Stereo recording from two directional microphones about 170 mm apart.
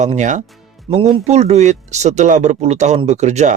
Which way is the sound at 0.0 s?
45° right (ahead or behind).